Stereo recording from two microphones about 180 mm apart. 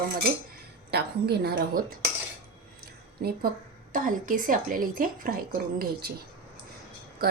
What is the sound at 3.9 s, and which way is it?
Speech, 50° right (ahead or behind).